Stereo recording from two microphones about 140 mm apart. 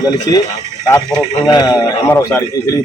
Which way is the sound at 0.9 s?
25° left (ahead or behind).